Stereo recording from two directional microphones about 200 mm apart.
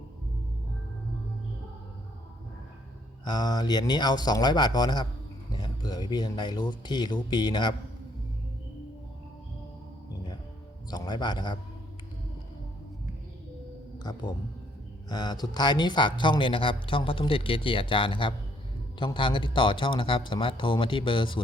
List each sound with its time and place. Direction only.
3.2 s speech: 20° left (ahead or behind)
10.9 s a man's voice: 20° left (ahead or behind)
14.0 s speech: 20° left (ahead or behind)